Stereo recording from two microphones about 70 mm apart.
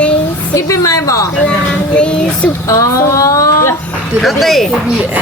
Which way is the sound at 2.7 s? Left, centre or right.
Left.